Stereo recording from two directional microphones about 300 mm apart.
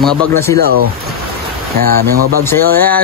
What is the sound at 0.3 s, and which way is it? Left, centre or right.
Speech, centre.